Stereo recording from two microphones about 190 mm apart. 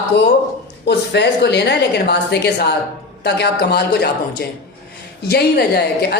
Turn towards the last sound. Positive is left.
turn(degrees=55)  # may be behind; listen again after turning